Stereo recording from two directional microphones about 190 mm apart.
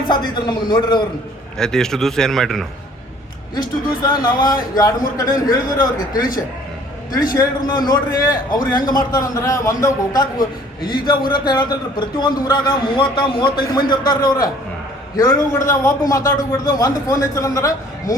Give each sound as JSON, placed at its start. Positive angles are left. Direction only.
{"t": 0.1, "sound": "a man's voice", "side_deg": 25}
{"t": 1.5, "sound": "a man's voice", "side_deg": 5}
{"t": 3.5, "sound": "a man's voice", "side_deg": 20}
{"t": 7.3, "sound": "a man's voice", "side_deg": 20}